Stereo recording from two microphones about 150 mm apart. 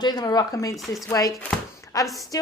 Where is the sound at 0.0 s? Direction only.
25° left (ahead or behind).